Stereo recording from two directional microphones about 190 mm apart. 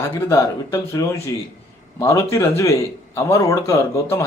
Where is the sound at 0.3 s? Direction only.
15° left (ahead or behind).